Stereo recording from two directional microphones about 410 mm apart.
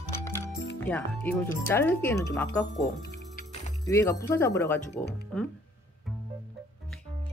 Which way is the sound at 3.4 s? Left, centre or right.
Centre.